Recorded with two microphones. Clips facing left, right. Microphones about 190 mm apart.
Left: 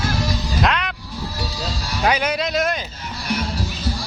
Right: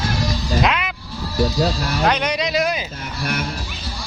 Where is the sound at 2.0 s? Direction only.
5° left (ahead or behind).